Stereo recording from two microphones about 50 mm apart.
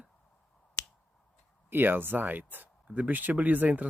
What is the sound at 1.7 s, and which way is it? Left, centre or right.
Speech, right.